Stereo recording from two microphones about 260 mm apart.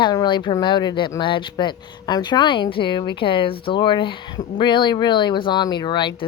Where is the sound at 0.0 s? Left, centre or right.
Centre.